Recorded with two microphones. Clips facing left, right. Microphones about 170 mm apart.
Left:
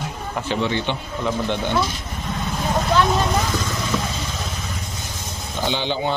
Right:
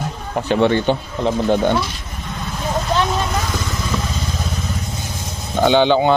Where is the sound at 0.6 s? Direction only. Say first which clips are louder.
Right 9 dB; 50° right (ahead or behind).